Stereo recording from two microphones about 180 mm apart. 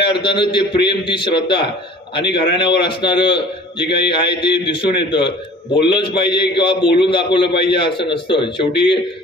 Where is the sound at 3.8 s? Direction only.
65° left (ahead or behind).